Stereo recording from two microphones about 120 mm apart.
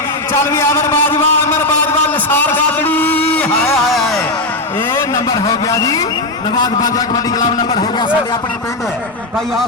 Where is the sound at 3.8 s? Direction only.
Centre (ahead or behind).